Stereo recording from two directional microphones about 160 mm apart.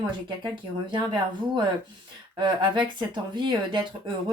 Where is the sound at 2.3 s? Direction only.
30° right (ahead or behind).